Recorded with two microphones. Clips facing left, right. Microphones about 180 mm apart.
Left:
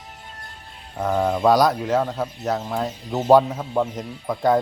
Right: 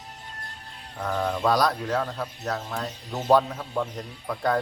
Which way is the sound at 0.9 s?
20° left (ahead or behind).